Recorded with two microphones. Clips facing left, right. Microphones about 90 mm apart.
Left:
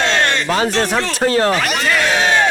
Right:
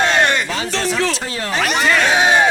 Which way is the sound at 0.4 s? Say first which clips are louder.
Left 7 dB; 60° left (ahead or behind).